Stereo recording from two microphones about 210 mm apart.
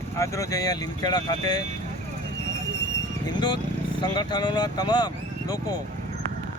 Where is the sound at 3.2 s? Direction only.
20° left (ahead or behind).